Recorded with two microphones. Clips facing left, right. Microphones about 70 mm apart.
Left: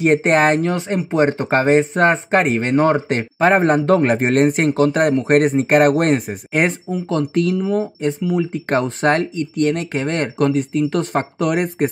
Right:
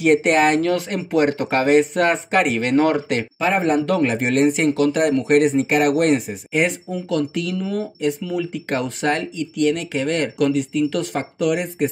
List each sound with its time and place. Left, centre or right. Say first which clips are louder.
0.0 s speech: left 1 dB; left
0.6 s speech: left 1 dB; left
7.5 s speech: left 5 dB; centre
8.0 s speech: left 3 dB; left
8.6 s speech: left 5 dB; left